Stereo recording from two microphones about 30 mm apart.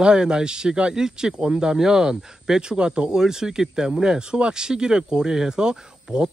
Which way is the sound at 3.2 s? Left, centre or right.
Centre.